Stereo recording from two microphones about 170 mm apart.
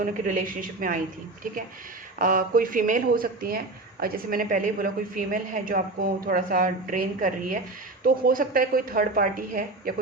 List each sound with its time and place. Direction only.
0.0 s speech: 50° right (ahead or behind)
2.1 s a woman's voice: 55° right (ahead or behind)